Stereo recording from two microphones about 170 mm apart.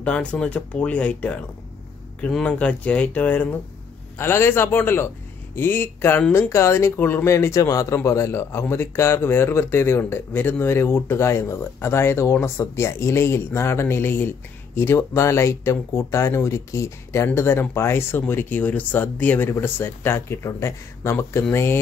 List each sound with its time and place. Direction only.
0.0 s speech: 5° left (ahead or behind)